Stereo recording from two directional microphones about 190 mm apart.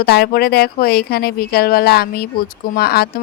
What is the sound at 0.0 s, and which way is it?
Speech, 55° left (ahead or behind).